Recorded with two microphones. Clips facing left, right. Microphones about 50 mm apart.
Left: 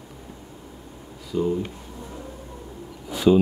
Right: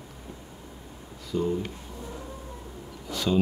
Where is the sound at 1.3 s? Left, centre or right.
Centre.